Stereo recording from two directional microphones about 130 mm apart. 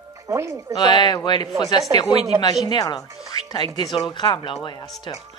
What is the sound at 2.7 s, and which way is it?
A woman's voice, 30° left (ahead or behind).